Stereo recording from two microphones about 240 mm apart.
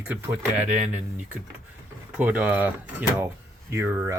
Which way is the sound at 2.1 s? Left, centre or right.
Centre.